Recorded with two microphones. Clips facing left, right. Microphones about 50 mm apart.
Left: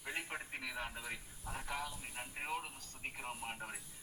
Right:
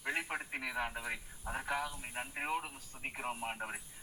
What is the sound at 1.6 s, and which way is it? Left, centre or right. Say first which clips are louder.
Speech: right 5 dB; right.